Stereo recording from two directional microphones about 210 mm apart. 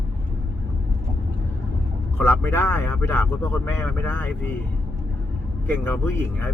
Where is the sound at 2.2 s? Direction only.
10° left (ahead or behind).